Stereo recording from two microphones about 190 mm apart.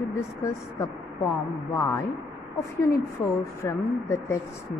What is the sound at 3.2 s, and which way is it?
A woman's voice, 15° left (ahead or behind).